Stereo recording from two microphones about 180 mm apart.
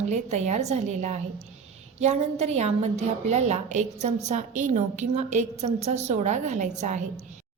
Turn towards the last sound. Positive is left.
turn(degrees=-40)  # may be behind; listen again after turning